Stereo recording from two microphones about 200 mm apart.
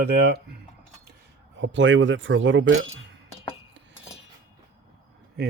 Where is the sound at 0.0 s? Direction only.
55° right (ahead or behind).